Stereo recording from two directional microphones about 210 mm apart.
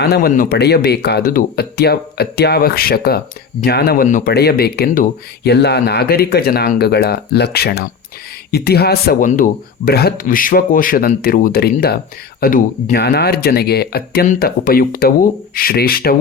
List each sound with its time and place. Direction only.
0.0 s speech: 45° left (ahead or behind)